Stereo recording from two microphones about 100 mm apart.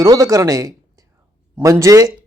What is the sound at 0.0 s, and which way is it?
Speech, 35° right (ahead or behind).